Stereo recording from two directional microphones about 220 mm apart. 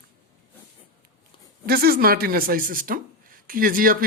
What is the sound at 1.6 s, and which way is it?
Speech, 45° right (ahead or behind).